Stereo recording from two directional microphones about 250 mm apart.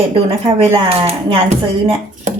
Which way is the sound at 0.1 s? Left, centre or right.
Right.